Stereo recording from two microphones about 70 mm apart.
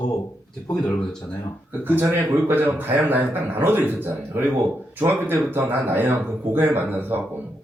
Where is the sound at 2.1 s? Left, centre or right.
Right.